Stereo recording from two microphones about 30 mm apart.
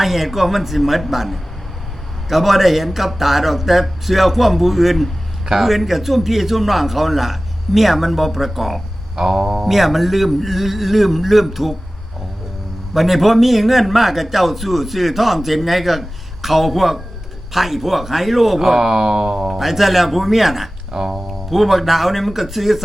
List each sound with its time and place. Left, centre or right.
0.0 s a man's voice: centre
9.1 s a man's voice: centre
12.9 s a man's voice: centre
19.5 s a man's voice: centre
20.9 s speech: centre
21.5 s a man's voice: centre